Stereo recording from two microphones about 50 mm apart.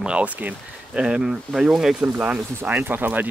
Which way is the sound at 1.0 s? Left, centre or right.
Centre.